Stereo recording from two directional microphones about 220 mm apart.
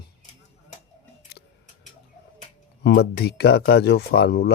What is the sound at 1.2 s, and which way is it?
Scissors, 45° left (ahead or behind).